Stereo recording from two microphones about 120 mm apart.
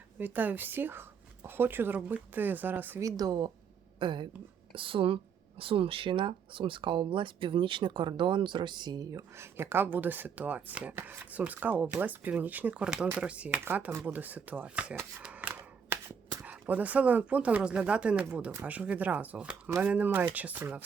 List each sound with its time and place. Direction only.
0.2 s speech: 15° right (ahead or behind)
3.0 s speech: 30° right (ahead or behind); by 14.9 s 10° right (ahead or behind)
14.9 s shuffling cards: 10° right (ahead or behind)
16.5 s speech: 15° right (ahead or behind)